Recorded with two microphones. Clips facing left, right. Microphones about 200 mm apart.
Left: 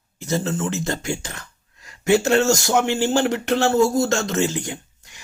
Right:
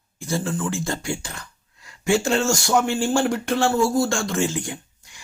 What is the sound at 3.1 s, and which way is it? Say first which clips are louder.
Speech: left 1 dB; 45° left (ahead or behind).